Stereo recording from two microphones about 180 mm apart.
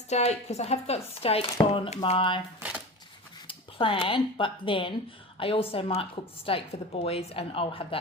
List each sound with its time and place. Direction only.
0.1 s a woman's voice: 35° left (ahead or behind)
3.4 s a woman's voice: 30° left (ahead or behind)